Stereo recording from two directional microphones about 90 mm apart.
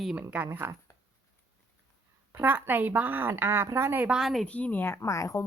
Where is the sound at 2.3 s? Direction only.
20° right (ahead or behind).